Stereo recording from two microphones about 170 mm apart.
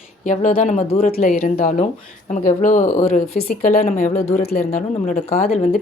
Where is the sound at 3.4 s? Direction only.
55° left (ahead or behind); by 5.5 s 40° left (ahead or behind).